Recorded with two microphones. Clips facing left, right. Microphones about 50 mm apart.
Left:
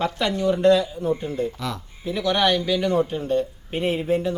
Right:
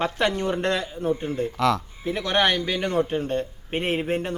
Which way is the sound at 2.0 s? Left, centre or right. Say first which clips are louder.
Left 3 dB; right.